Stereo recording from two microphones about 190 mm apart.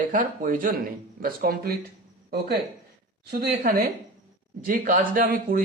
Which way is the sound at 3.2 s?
55° right (ahead or behind).